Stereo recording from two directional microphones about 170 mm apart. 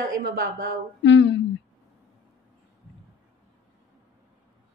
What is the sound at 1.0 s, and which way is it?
Speech, 90° left.